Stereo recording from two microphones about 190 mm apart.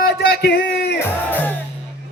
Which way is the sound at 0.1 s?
60° left (ahead or behind).